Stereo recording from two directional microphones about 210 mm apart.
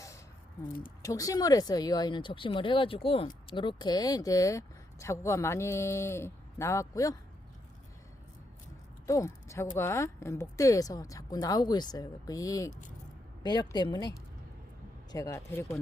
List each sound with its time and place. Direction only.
1.0 s speech: 15° left (ahead or behind)
9.0 s speech: 15° left (ahead or behind)
15.1 s speech: 15° left (ahead or behind)